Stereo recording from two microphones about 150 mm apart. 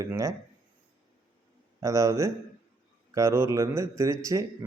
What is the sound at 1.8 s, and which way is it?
Mantra, 20° right (ahead or behind).